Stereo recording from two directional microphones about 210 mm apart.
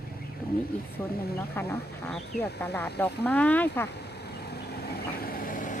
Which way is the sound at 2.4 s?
10° left (ahead or behind).